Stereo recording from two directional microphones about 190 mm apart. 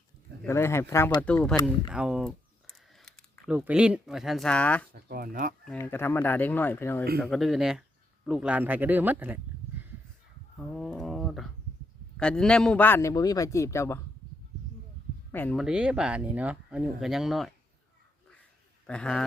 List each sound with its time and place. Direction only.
0.4 s a man's voice: 15° left (ahead or behind)
1.9 s a sound: 5° right (ahead or behind)
3.5 s speech: 5° right (ahead or behind)
4.9 s speech: 50° right (ahead or behind)
5.7 s a man's voice: 10° left (ahead or behind)
7.2 s speech: centre (ahead or behind)
10.6 s a sound: centre (ahead or behind)
12.1 s a man's voice: 5° left (ahead or behind)
15.3 s speech: 10° left (ahead or behind)
15.5 s speech: 5° right (ahead or behind)
18.9 s speech: 5° left (ahead or behind)